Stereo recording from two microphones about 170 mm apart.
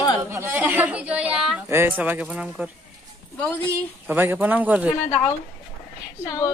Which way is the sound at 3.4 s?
10° left (ahead or behind).